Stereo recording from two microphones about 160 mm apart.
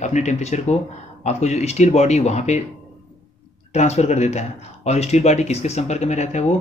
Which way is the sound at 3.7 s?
40° left (ahead or behind).